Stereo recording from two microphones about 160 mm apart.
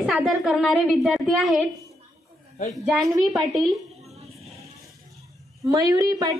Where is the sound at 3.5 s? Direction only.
Centre (ahead or behind).